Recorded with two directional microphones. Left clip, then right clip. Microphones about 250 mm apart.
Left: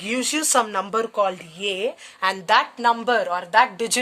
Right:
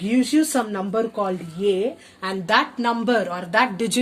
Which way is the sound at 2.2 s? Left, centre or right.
Left.